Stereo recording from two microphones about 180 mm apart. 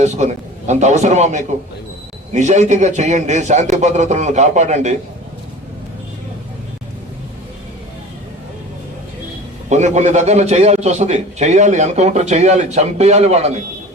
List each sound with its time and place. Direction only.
0.0 s a man's voice: 40° right (ahead or behind)
9.6 s a man's voice: 40° right (ahead or behind)